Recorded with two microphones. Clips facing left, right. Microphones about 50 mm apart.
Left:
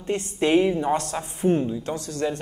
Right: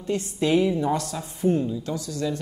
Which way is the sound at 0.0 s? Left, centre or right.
Left.